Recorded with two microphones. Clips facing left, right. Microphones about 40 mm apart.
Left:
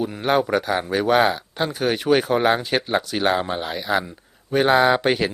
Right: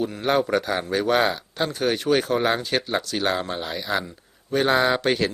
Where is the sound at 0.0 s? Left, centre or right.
Centre.